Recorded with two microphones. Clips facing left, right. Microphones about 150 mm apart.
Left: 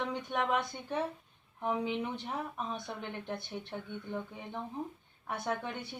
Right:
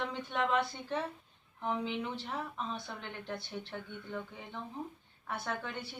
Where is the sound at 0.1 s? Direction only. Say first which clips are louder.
Left 2 dB; 15° left (ahead or behind).